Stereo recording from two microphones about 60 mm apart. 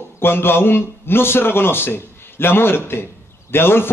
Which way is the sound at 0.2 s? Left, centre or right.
Left.